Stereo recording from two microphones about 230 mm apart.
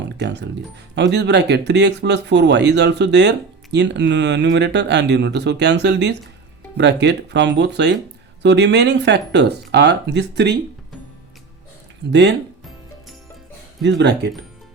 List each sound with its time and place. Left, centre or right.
0.0 s speech: right
12.1 s speech: right
13.8 s speech: right